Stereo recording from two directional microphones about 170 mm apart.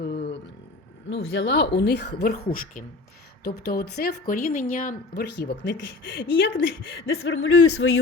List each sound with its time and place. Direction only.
0.0 s a sound: 75° left (ahead or behind)
1.1 s speech: 90° left; by 2.8 s 55° left (ahead or behind)
3.4 s a woman's voice: 70° left (ahead or behind); by 5.2 s 50° left (ahead or behind)
5.2 s speech: 80° left